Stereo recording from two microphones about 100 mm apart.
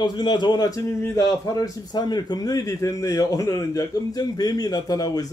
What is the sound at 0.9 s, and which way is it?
A man's voice, 30° left (ahead or behind).